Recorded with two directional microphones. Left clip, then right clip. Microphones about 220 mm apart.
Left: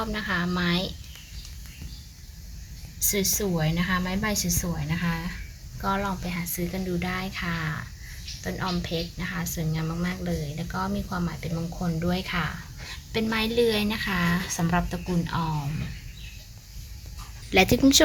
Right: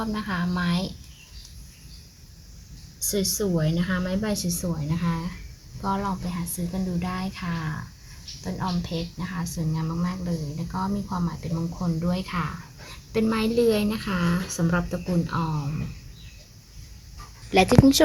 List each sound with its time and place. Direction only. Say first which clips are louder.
0.0 s a woman's voice: left 2 dB; centre (ahead or behind)
3.0 s a woman's voice: even; centre (ahead or behind)
17.5 s a woman's voice: right 1 dB; 5° right (ahead or behind)